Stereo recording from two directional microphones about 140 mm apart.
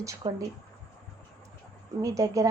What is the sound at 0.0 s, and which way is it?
Speech, 25° right (ahead or behind).